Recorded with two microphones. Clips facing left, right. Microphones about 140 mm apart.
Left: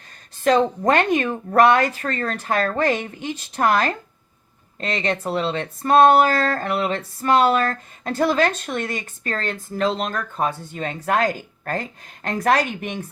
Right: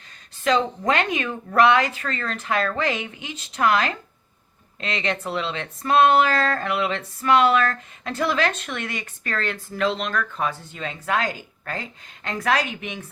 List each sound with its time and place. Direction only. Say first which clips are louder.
0.4 s a woman's voice: left 4 dB; 45° left (ahead or behind)